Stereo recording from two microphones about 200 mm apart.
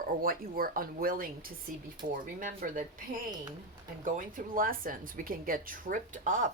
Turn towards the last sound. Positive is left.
turn(degrees=-40)  # may be behind; listen again after turning